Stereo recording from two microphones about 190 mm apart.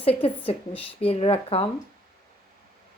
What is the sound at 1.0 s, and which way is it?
Speech, 30° left (ahead or behind).